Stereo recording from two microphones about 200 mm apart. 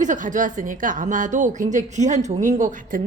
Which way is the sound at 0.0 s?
40° right (ahead or behind).